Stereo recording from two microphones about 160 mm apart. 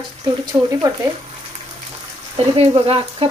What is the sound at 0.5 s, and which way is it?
Speech, 20° right (ahead or behind).